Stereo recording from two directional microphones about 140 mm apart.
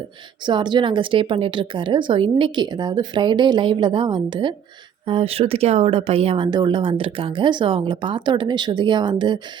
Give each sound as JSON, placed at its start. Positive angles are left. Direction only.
{"t": 0.4, "sound": "speech", "side_deg": -35}